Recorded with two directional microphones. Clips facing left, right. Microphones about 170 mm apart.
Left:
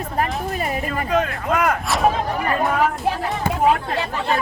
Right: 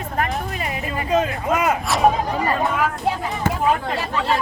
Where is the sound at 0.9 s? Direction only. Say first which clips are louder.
Right 3 dB; 10° right (ahead or behind).